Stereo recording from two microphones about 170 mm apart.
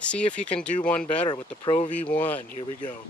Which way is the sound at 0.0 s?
5° left (ahead or behind).